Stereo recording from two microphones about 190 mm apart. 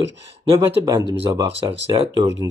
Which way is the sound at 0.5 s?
20° right (ahead or behind).